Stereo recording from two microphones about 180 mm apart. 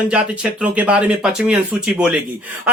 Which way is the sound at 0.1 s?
10° right (ahead or behind).